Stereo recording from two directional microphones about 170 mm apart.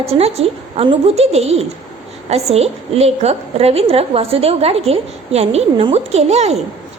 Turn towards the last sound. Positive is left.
turn(degrees=-40)  # may be behind; listen again after turning